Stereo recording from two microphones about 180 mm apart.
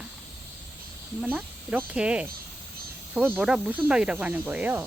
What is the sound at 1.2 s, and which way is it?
Speech, 10° right (ahead or behind).